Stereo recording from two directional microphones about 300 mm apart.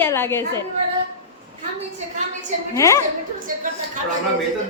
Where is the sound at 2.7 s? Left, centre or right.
Centre.